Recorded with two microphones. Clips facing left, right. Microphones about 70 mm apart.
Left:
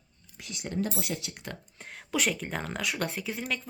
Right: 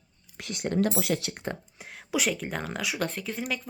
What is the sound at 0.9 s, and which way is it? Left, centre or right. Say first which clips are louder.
Speech: right 6 dB; right.